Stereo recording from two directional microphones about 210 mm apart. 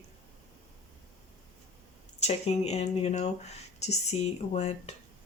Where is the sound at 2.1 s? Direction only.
30° left (ahead or behind).